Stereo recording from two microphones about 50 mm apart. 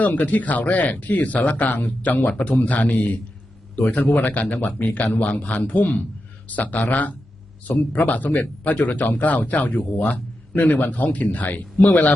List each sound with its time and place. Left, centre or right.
0.0 s speech: left